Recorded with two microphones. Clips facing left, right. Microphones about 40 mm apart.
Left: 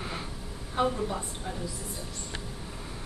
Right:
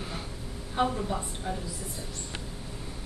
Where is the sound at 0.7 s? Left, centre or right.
Centre.